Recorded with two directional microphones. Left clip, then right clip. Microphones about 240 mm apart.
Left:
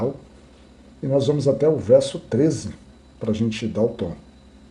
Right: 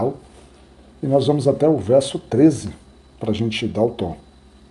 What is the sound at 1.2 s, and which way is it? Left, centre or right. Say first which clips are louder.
Speech: even; right.